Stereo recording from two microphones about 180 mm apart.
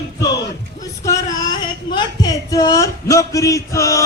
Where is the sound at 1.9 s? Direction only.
20° left (ahead or behind).